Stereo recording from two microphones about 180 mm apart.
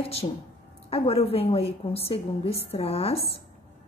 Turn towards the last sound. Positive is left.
turn(degrees=35)  # may be behind; listen again after turning